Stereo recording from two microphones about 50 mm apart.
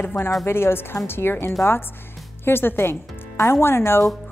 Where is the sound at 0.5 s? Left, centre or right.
Left.